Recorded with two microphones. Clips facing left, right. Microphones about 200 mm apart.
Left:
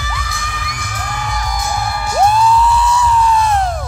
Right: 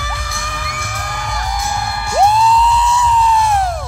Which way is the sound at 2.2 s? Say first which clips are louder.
Even; 20° right (ahead or behind).